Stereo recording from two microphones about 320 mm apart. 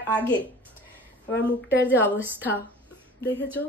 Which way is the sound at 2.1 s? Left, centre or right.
Centre.